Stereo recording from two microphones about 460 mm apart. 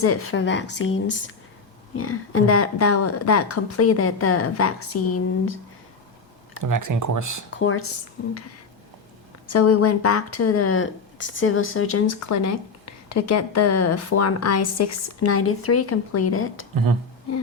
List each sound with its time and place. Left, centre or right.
0.0 s a woman's voice: left
6.6 s speech: right
7.5 s a woman's voice: left
9.5 s a woman's voice: left